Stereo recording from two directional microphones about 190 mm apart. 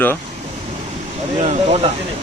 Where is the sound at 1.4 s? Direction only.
35° right (ahead or behind).